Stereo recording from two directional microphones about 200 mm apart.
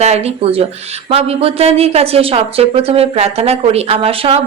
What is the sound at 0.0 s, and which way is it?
Speech, 30° right (ahead or behind).